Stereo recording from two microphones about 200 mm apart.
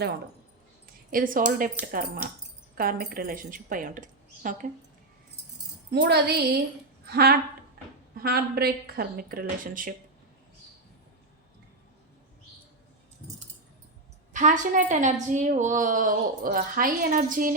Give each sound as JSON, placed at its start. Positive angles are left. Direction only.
{"t": 1.1, "sound": "speech", "side_deg": -45}
{"t": 5.9, "sound": "speech", "side_deg": -55}
{"t": 14.3, "sound": "a woman's voice", "side_deg": -40}